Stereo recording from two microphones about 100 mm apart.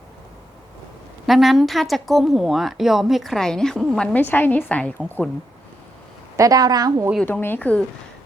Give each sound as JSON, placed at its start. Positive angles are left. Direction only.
{"t": 1.3, "sound": "a woman's voice", "side_deg": 0}
{"t": 6.3, "sound": "a woman's voice", "side_deg": -35}
{"t": 7.4, "sound": "speech", "side_deg": 15}